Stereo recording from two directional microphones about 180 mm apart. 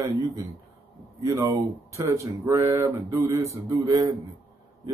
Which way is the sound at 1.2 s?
15° right (ahead or behind).